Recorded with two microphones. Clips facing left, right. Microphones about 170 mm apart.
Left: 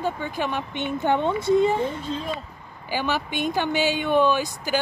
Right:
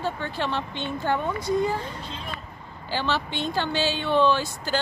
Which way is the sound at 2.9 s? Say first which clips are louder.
Left 1 dB; 15° left (ahead or behind).